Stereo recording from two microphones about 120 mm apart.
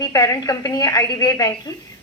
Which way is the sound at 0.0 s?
30° left (ahead or behind).